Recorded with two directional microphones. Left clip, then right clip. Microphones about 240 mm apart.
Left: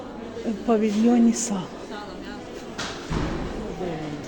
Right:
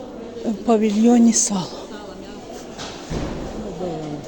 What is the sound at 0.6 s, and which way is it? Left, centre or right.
A woman's voice, centre.